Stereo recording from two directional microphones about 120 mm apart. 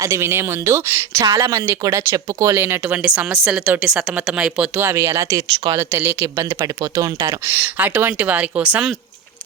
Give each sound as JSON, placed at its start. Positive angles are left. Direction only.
{"t": 0.0, "sound": "speech", "side_deg": -20}
{"t": 3.0, "sound": "speech", "side_deg": -10}
{"t": 4.8, "sound": "speech", "side_deg": -25}